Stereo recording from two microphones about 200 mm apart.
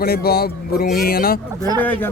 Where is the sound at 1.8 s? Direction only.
10° left (ahead or behind).